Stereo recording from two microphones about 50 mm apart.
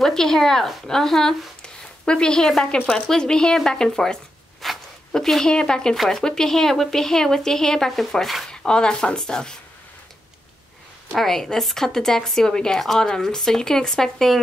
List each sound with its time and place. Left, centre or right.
0.0 s a woman's voice: centre
1.6 s a sound: centre
2.9 s a woman's voice: centre
8.5 s a woman's voice: centre
11.1 s a woman's voice: centre